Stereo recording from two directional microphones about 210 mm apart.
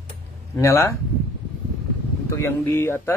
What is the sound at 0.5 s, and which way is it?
Speech, 10° left (ahead or behind).